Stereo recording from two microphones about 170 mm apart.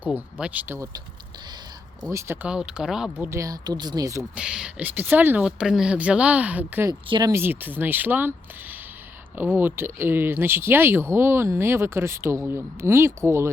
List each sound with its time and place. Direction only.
0.3 s speech: 10° right (ahead or behind)
2.0 s speech: 15° right (ahead or behind)
3.2 s speech: 20° right (ahead or behind)
4.2 s speech: 5° right (ahead or behind)
7.1 s speech: 20° right (ahead or behind)
9.4 s speech: 10° right (ahead or behind)